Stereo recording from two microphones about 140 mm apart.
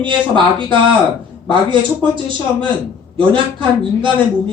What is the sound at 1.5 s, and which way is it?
Speech, 35° right (ahead or behind).